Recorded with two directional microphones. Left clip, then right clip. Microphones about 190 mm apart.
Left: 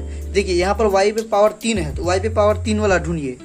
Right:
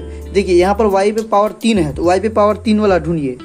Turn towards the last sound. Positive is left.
turn(degrees=-5)  # may be behind; listen again after turning